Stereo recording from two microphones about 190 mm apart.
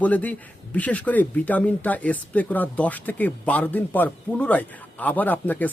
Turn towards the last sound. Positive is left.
turn(degrees=10)  # may be behind; listen again after turning